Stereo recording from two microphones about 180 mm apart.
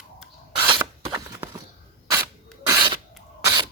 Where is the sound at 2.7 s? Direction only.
25° right (ahead or behind).